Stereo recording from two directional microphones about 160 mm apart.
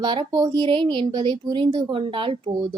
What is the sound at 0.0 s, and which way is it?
A woman's voice, 30° right (ahead or behind).